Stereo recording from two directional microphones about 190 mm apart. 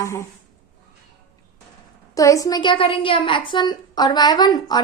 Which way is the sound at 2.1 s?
15° left (ahead or behind).